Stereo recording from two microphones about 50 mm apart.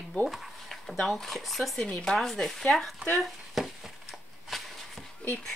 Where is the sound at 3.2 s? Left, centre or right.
Centre.